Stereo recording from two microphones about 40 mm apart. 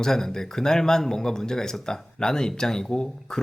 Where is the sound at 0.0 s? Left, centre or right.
Centre.